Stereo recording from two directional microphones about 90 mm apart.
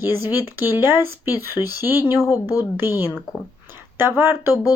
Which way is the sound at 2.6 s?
25° right (ahead or behind).